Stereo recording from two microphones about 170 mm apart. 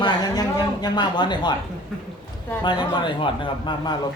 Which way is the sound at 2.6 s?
25° left (ahead or behind).